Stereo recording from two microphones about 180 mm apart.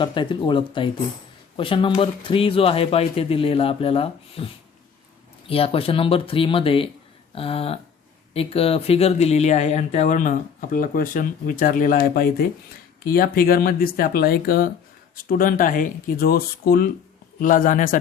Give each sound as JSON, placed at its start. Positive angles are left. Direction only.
{"t": 0.0, "sound": "speech", "side_deg": 25}